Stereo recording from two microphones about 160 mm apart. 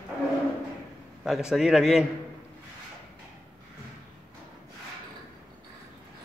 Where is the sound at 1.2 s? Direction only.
5° right (ahead or behind).